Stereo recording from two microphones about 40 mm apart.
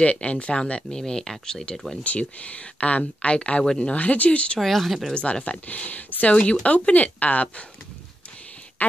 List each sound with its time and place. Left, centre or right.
0.0 s speech: left; by 1.8 s centre
2.0 s speech: left
4.6 s speech: centre
5.1 s speech: left